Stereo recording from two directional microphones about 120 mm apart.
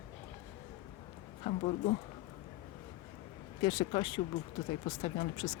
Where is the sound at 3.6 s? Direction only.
35° left (ahead or behind).